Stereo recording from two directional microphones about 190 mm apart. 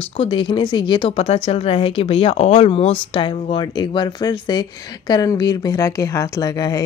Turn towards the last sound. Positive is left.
turn(degrees=20)  # may be behind; listen again after turning